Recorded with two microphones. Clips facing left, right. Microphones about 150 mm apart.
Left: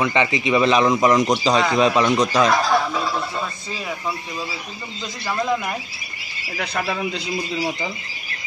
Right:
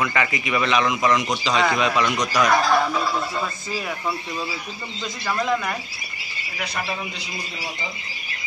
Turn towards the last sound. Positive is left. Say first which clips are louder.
# left 4 dB
turn(degrees=50)  # may be behind; listen again after turning